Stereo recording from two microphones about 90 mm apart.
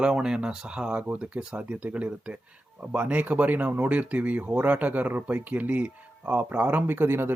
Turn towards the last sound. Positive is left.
turn(degrees=-25)  # may be behind; listen again after turning